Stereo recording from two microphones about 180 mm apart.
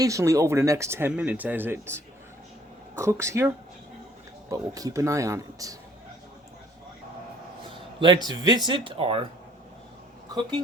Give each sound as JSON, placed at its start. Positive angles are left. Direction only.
{"t": 0.0, "sound": "speech", "side_deg": -15}
{"t": 3.0, "sound": "speech", "side_deg": -15}
{"t": 8.0, "sound": "speech", "side_deg": -20}